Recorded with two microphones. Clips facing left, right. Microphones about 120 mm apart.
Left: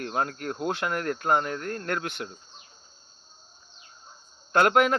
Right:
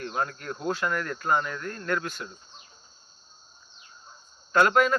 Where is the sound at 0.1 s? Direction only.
50° left (ahead or behind).